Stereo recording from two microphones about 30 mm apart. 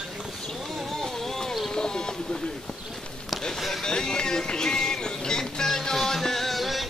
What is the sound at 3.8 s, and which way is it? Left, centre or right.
Speech, left.